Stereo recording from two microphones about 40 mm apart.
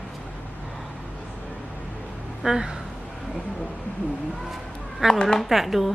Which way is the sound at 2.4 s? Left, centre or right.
Centre.